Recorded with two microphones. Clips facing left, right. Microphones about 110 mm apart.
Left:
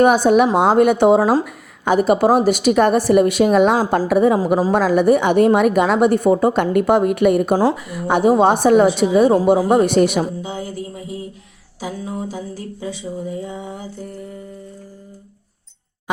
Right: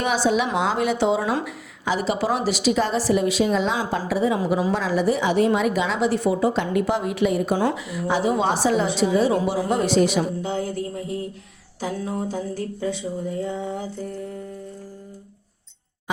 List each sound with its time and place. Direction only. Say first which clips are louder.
0.0 s speech: left 9 dB; 50° left (ahead or behind)
1.2 s speech: left 8 dB; 35° left (ahead or behind)
1.5 s a woman's voice: left 7 dB; 50° left (ahead or behind)
7.6 s speech: left 6 dB; 35° left (ahead or behind)
7.9 s a woman's voice: left 7 dB; 55° left (ahead or behind)
10.4 s mantra: right 1 dB; 5° left (ahead or behind)